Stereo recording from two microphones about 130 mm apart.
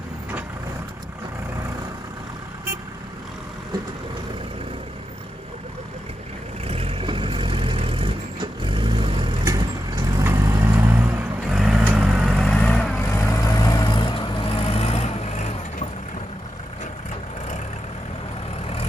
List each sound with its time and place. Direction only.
6.7 s vehicle: 45° right (ahead or behind)
9.4 s vehicle: 25° right (ahead or behind)
11.5 s vehicle: centre (ahead or behind)
12.4 s vehicle: 5° left (ahead or behind)
13.0 s vehicle: 25° left (ahead or behind); by 15.9 s 65° left (ahead or behind)